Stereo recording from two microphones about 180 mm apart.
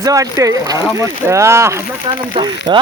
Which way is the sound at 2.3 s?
25° right (ahead or behind).